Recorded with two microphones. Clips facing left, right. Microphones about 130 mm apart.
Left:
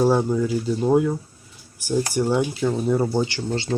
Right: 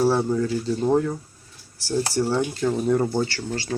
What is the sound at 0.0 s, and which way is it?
Speech, 15° left (ahead or behind).